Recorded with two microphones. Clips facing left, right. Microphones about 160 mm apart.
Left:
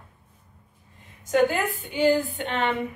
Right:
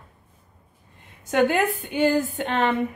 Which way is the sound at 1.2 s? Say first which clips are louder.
Right 1 dB; 60° right (ahead or behind).